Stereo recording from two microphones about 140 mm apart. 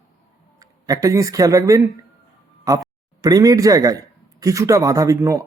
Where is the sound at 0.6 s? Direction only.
25° right (ahead or behind).